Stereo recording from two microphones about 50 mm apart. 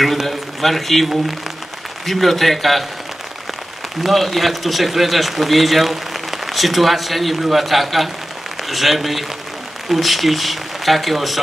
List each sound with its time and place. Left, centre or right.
0.0 s a man's voice: centre
4.0 s a man's voice: centre